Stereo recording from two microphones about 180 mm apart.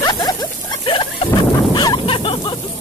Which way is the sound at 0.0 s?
25° left (ahead or behind).